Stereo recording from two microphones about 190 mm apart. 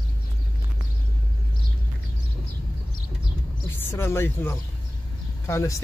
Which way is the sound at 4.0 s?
10° left (ahead or behind).